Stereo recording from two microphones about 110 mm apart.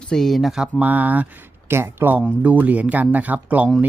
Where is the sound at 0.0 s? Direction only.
5° left (ahead or behind).